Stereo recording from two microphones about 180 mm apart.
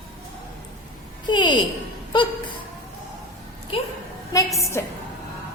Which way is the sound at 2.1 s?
25° left (ahead or behind).